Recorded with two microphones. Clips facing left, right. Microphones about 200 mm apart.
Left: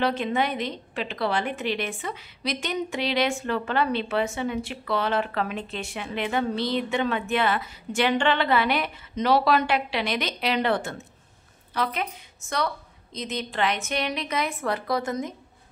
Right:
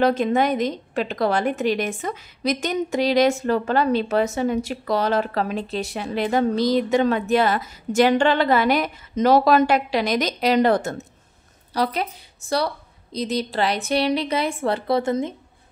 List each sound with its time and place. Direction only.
0.0 s a woman's voice: 45° right (ahead or behind); by 15.3 s 30° right (ahead or behind)